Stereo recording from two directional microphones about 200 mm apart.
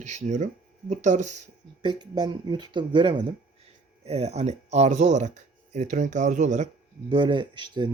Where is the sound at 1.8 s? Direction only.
20° right (ahead or behind); by 6.7 s 35° right (ahead or behind).